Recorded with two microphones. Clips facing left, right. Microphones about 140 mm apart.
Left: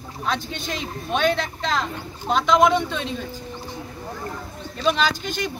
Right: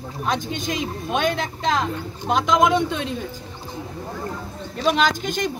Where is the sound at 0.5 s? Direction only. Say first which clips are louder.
Right 4 dB; 15° right (ahead or behind).